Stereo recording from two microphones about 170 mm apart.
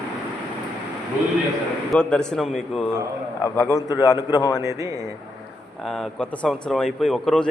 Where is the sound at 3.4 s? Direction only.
15° left (ahead or behind).